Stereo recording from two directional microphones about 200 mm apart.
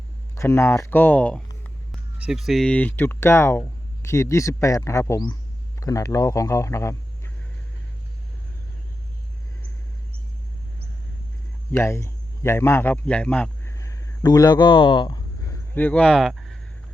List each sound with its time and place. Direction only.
0.3 s speech: 15° left (ahead or behind)
1.9 s speech: 5° right (ahead or behind); by 6.9 s 15° left (ahead or behind)
11.7 s speech: 15° left (ahead or behind)
15.7 s speech: 10° left (ahead or behind)